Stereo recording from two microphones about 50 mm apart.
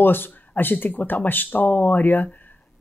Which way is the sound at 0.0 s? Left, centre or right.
Left.